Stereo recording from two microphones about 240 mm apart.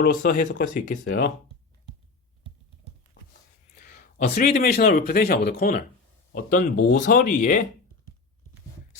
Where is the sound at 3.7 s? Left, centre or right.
Left.